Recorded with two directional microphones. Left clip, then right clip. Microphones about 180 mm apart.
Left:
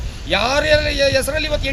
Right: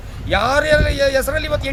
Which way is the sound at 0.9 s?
45° right (ahead or behind).